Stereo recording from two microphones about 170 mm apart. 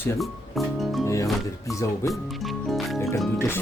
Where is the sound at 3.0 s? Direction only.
15° left (ahead or behind).